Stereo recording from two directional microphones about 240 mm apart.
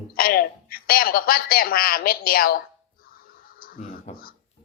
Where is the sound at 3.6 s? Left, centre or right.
Left.